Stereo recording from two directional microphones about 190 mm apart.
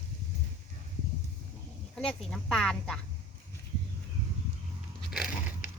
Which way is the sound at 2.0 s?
5° left (ahead or behind).